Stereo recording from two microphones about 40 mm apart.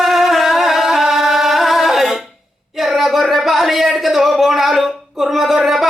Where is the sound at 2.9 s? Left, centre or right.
Centre.